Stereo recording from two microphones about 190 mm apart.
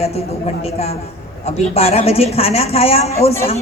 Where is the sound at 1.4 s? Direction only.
30° left (ahead or behind).